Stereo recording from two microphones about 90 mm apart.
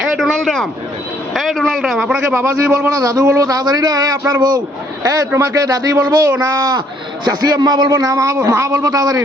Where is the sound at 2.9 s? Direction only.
45° right (ahead or behind).